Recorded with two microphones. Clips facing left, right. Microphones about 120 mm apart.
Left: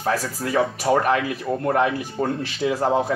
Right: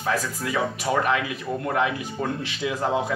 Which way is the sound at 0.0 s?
35° left (ahead or behind).